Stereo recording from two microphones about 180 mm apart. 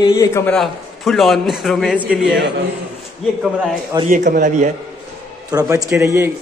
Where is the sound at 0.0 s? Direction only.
20° left (ahead or behind).